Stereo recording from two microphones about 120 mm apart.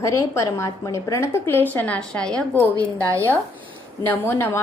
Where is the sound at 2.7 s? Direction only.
25° right (ahead or behind).